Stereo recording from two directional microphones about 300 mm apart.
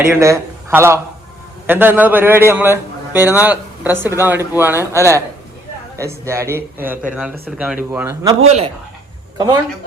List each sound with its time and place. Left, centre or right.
0.0 s a man's voice: centre
8.4 s speech: right